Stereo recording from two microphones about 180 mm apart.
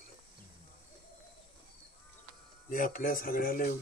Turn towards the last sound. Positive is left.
turn(degrees=50)  # may be behind; listen again after turning